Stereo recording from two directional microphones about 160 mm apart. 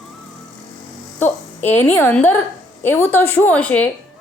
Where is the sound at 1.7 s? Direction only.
10° left (ahead or behind).